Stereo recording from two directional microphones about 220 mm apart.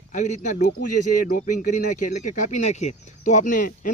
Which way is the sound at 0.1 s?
35° left (ahead or behind).